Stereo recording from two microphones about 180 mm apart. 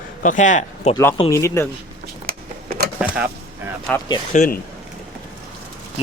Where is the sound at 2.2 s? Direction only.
55° right (ahead or behind).